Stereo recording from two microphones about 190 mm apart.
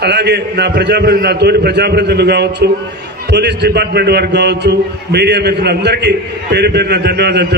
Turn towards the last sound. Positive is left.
turn(degrees=-60)  # may be behind; listen again after turning